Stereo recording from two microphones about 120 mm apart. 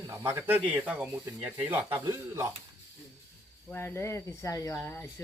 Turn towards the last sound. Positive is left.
turn(degrees=20)  # may be behind; listen again after turning